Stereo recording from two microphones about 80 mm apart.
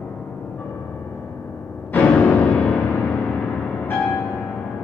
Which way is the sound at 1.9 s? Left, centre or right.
Left.